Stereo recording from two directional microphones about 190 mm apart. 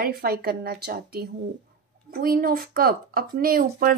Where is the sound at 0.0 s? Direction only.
50° right (ahead or behind).